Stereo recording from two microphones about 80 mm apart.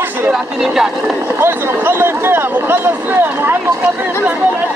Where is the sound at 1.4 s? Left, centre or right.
Right.